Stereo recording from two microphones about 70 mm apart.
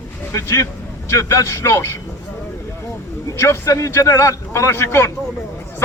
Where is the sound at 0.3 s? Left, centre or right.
Left.